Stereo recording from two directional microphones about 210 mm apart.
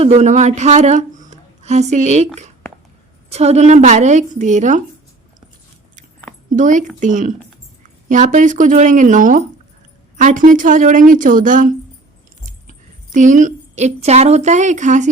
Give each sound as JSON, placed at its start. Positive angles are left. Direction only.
{"t": 0.0, "sound": "a woman's voice", "side_deg": -30}
{"t": 6.6, "sound": "a woman's voice", "side_deg": -35}